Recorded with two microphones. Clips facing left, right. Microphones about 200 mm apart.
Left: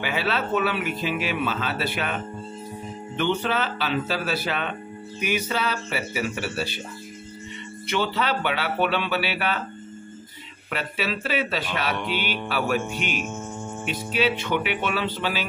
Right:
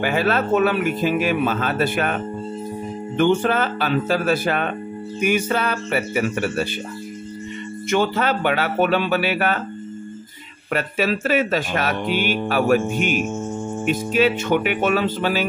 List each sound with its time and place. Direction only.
0.0 s speech: 50° right (ahead or behind)
3.2 s speech: 50° right (ahead or behind)
7.9 s speech: 45° right (ahead or behind)
10.7 s speech: 45° right (ahead or behind)